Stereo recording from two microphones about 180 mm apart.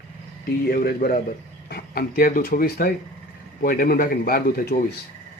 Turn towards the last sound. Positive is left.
turn(degrees=55)  # may be behind; listen again after turning